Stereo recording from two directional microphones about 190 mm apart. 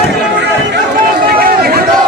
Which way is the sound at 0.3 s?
60° right (ahead or behind).